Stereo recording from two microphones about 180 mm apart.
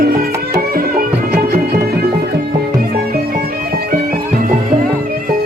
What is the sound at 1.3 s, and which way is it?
Music, 60° right (ahead or behind).